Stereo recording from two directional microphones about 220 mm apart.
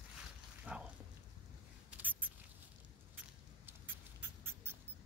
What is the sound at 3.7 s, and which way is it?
Rodents, 10° right (ahead or behind).